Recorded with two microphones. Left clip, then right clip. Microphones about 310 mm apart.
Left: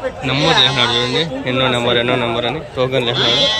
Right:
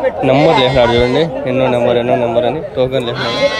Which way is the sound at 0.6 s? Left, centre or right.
Centre.